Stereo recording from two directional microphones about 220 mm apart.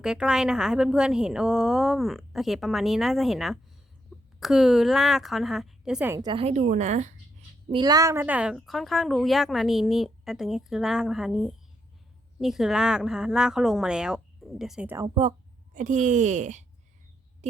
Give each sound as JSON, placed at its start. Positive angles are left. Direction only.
{"t": 0.0, "sound": "speech", "side_deg": -5}
{"t": 7.7, "sound": "speech", "side_deg": -20}
{"t": 15.7, "sound": "speech", "side_deg": -35}